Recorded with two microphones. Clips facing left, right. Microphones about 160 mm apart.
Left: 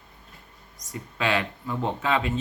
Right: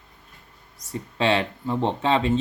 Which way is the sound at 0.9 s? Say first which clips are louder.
Right 4 dB; 30° right (ahead or behind).